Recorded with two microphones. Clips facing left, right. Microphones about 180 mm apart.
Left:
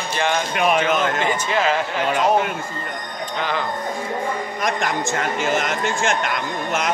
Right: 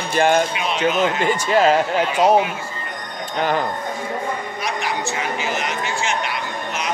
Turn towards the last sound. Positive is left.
turn(degrees=50)  # may be behind; listen again after turning